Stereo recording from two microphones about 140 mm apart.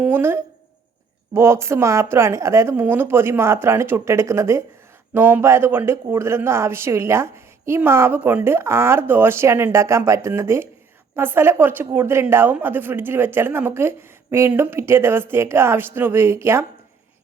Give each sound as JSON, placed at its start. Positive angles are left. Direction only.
{"t": 0.0, "sound": "a woman's voice", "side_deg": -15}